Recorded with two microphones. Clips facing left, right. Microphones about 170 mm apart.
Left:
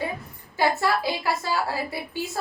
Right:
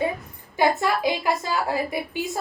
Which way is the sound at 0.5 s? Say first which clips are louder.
Right 2 dB; 20° right (ahead or behind).